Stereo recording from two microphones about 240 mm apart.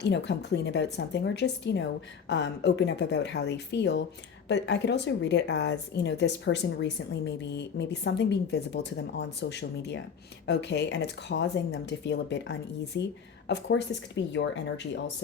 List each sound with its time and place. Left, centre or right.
0.0 s speech: left